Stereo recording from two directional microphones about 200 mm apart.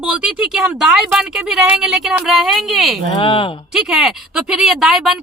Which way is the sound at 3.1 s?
25° left (ahead or behind).